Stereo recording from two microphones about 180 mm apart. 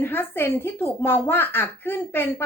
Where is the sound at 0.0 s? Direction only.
10° left (ahead or behind).